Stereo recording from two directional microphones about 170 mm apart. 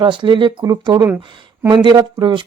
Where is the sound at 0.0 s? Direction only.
30° right (ahead or behind).